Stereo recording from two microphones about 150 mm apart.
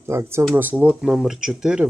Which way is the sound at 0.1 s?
20° right (ahead or behind).